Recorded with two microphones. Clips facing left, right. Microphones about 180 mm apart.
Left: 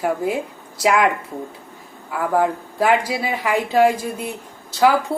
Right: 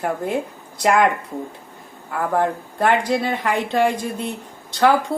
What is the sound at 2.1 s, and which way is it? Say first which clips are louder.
Speech: left 1 dB; 5° left (ahead or behind).